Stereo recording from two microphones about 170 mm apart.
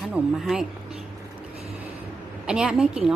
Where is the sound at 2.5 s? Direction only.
5° right (ahead or behind).